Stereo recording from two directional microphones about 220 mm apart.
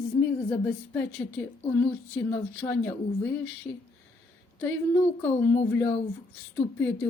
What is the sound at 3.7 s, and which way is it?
Speech, 20° left (ahead or behind).